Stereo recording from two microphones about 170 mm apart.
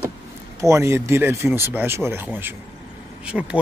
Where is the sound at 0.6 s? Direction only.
15° right (ahead or behind).